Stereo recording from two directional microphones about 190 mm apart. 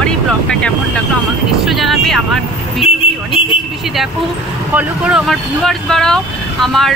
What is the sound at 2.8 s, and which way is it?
Speech, 30° left (ahead or behind).